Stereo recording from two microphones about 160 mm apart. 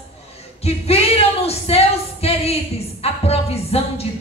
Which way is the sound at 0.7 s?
40° left (ahead or behind).